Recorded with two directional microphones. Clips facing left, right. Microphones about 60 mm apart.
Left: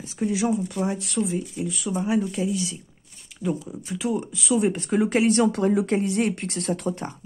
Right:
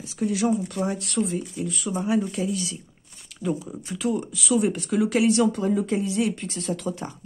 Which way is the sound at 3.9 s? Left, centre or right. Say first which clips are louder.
Even; centre.